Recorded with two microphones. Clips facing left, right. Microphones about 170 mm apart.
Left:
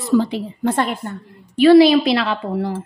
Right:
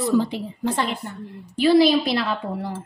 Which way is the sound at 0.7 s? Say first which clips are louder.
Left 5 dB; 50° left (ahead or behind).